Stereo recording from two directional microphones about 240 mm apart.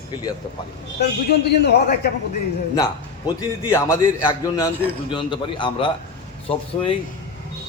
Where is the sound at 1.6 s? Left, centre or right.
Left.